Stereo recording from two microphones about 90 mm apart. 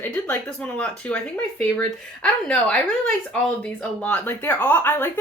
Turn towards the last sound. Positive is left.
turn(degrees=25)  # may be behind; listen again after turning